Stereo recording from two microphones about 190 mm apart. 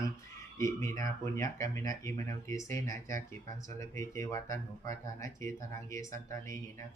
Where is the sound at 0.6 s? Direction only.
15° left (ahead or behind).